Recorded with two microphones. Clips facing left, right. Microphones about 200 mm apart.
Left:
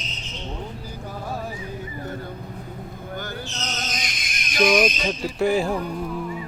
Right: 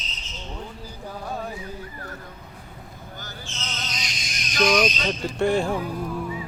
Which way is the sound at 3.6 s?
45° left (ahead or behind).